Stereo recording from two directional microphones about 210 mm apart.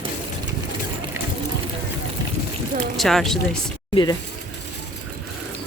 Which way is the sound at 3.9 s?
25° left (ahead or behind).